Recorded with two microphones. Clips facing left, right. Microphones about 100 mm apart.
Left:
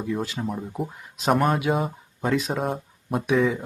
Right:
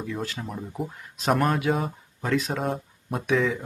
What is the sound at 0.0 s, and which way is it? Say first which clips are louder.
Speech: left 4 dB; 10° left (ahead or behind).